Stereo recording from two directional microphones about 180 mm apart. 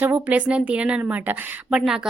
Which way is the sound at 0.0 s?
10° right (ahead or behind).